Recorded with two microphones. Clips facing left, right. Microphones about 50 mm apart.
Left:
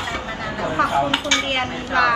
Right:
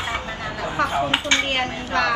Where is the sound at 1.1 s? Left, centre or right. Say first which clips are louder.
Even; right.